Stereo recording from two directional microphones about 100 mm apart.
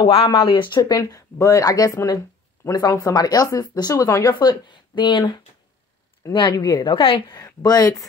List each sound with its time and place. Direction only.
0.1 s speech: 60° left (ahead or behind); by 4.2 s 35° left (ahead or behind)
4.4 s speech: 50° left (ahead or behind)
6.5 s speech: 35° left (ahead or behind)
6.9 s a woman's voice: 60° left (ahead or behind)
7.3 s speech: 40° left (ahead or behind)